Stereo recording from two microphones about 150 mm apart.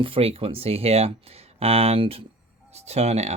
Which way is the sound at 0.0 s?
40° right (ahead or behind).